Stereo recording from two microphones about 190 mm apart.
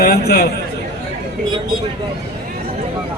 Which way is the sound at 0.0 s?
55° left (ahead or behind).